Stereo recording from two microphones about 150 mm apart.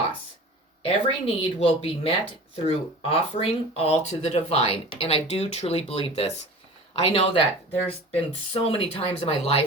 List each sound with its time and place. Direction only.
0.9 s speech: 40° left (ahead or behind)